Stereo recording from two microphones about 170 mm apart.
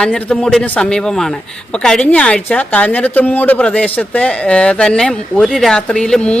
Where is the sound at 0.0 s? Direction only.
5° left (ahead or behind).